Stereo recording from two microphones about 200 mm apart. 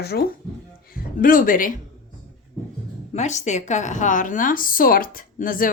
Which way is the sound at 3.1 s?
35° left (ahead or behind).